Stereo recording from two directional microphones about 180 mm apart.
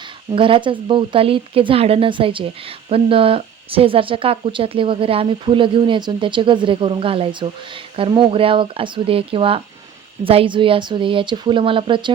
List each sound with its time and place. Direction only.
0.3 s speech: 30° right (ahead or behind)